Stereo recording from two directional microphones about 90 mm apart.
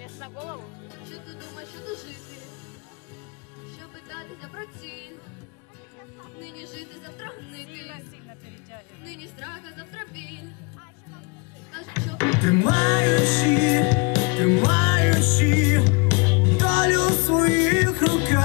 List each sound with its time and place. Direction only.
0.0 s music: 15° left (ahead or behind)
4.1 s music: 15° left (ahead or behind)
6.4 s music: 15° left (ahead or behind)
11.7 s music: 15° left (ahead or behind)